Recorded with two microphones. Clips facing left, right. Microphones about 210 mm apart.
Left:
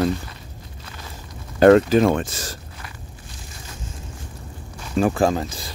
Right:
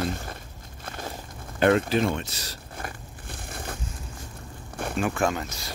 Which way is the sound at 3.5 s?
55° right (ahead or behind).